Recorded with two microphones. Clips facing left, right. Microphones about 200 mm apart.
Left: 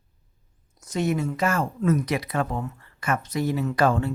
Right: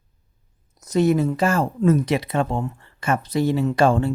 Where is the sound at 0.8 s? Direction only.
35° right (ahead or behind).